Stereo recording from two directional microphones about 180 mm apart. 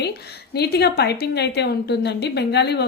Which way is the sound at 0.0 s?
65° left (ahead or behind).